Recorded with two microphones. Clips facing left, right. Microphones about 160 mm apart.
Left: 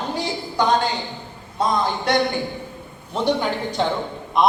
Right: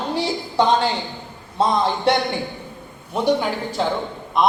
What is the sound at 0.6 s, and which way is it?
Speech, 25° right (ahead or behind).